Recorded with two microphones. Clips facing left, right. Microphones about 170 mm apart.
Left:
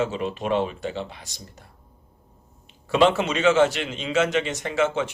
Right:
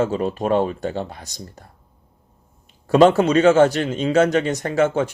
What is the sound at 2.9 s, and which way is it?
Speech, 40° right (ahead or behind).